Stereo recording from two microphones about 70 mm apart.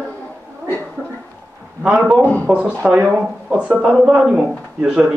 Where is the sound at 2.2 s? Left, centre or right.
Left.